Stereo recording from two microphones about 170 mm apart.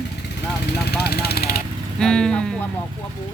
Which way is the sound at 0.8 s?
65° left (ahead or behind).